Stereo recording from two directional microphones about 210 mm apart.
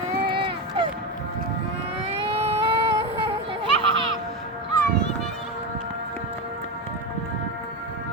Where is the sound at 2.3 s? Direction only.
30° right (ahead or behind).